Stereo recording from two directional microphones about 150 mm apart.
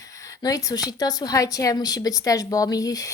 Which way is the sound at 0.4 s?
25° left (ahead or behind).